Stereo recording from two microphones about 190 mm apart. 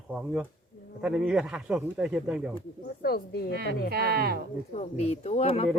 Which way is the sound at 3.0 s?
55° left (ahead or behind).